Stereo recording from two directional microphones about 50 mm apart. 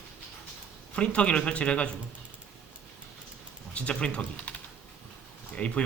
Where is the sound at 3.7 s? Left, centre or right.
Left.